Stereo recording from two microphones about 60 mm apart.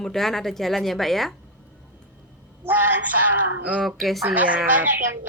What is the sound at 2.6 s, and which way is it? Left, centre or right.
Speech, right.